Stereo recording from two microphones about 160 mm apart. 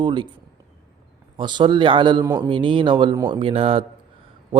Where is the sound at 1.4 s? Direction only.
30° right (ahead or behind).